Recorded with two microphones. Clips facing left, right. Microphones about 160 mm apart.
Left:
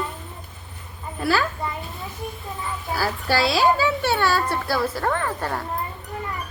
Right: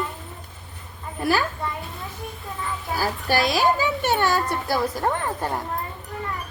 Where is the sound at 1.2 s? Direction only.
15° right (ahead or behind).